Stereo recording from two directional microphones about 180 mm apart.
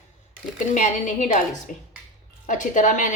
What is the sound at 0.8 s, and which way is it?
A woman's voice, 40° left (ahead or behind).